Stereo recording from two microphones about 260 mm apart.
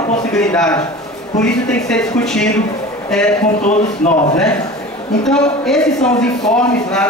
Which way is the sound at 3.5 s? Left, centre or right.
Left.